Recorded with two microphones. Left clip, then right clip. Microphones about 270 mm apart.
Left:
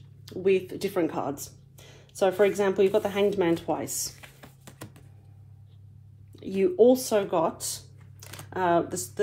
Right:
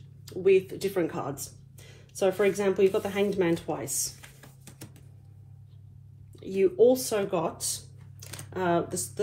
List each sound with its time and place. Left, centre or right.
0.2 s speech: left
6.3 s speech: left
8.2 s a sound: centre
8.5 s speech: left